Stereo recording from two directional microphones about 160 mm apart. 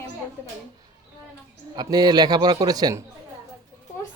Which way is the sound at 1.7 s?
25° right (ahead or behind).